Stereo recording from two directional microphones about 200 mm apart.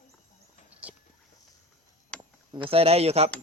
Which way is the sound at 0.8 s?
5° right (ahead or behind).